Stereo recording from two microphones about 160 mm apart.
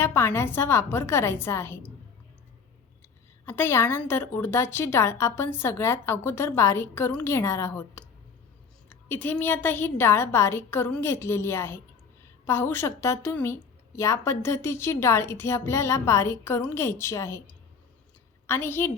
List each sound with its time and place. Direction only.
0.0 s a woman's voice: 15° left (ahead or behind)
3.4 s a woman's voice: 15° left (ahead or behind)